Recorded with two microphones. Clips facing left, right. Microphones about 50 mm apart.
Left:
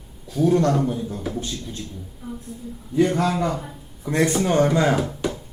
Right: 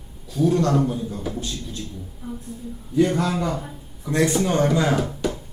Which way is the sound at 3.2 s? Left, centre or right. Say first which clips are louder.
Left 2 dB; left.